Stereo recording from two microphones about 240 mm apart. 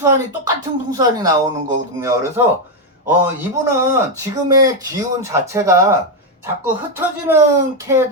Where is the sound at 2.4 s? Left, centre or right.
Centre.